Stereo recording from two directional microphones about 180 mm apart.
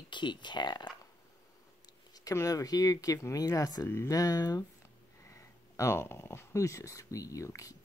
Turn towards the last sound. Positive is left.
turn(degrees=20)  # may be behind; listen again after turning